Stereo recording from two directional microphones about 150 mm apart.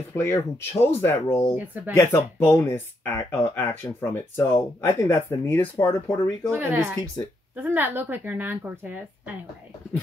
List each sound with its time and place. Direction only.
0.1 s speech: 20° left (ahead or behind)
6.5 s a woman's voice: 15° right (ahead or behind)